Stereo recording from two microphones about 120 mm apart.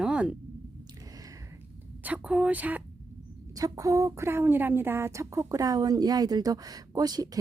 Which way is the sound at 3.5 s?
30° right (ahead or behind).